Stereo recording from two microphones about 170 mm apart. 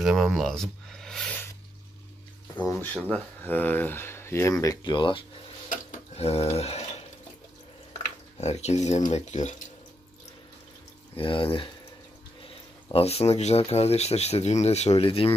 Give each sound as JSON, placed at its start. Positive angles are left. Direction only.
{"t": 0.0, "sound": "speech", "side_deg": 0}
{"t": 2.7, "sound": "speech", "side_deg": 10}
{"t": 5.7, "sound": "tick-tock", "side_deg": 45}
{"t": 6.5, "sound": "a sound", "side_deg": 35}
{"t": 8.4, "sound": "speech", "side_deg": 40}
{"t": 11.1, "sound": "speech", "side_deg": 30}